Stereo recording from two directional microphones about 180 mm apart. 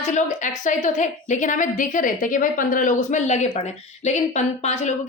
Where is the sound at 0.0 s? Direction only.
40° left (ahead or behind).